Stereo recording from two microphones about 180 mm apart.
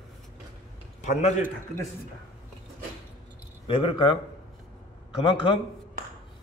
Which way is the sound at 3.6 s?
30° left (ahead or behind).